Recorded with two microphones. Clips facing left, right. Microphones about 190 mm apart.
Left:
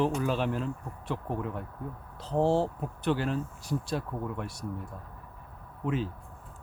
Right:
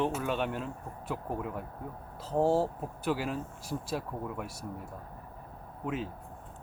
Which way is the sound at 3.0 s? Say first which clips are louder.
Left 3 dB; 5° right (ahead or behind).